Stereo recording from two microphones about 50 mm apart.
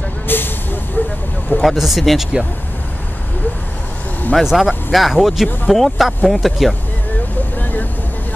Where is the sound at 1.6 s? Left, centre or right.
Centre.